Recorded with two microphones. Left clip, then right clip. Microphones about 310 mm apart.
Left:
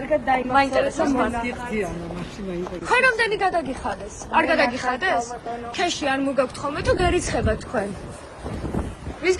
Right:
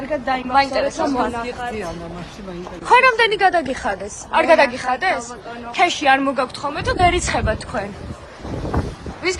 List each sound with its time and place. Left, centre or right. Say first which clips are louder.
0.1 s a woman's voice: right 1 dB; centre